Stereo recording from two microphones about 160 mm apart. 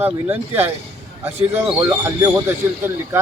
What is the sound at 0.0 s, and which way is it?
A man's voice, 15° right (ahead or behind).